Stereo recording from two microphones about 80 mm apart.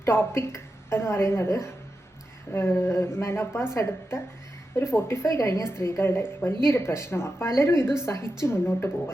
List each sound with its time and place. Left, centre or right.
0.0 s a woman's voice: left